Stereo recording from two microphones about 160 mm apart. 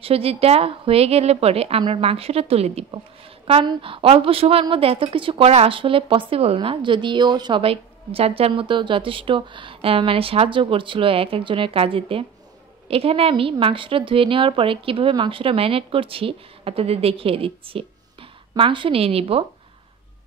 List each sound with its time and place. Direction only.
0.0 s a woman's voice: 35° right (ahead or behind)